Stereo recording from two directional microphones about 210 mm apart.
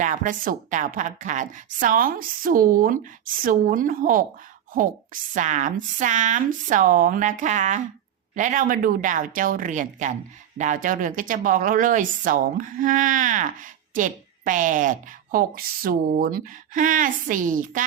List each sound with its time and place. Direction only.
0.0 s speech: 40° right (ahead or behind)